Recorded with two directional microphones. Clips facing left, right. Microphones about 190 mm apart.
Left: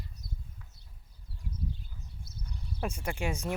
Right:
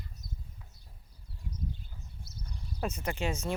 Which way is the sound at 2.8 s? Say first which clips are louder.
Right 1 dB; 10° left (ahead or behind).